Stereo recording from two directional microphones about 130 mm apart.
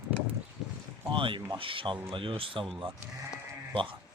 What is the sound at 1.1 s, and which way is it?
Speech, 40° right (ahead or behind).